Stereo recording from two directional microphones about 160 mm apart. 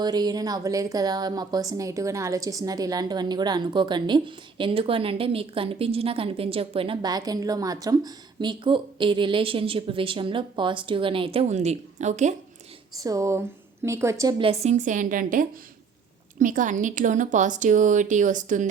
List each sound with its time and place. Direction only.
0.0 s a woman's voice: 25° right (ahead or behind); by 12.3 s 50° right (ahead or behind)
13.0 s a woman's voice: 20° right (ahead or behind)
14.3 s speech: 40° right (ahead or behind)